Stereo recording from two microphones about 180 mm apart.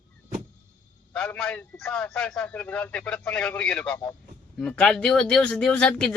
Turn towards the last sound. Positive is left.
turn(degrees=5)  # may be behind; listen again after turning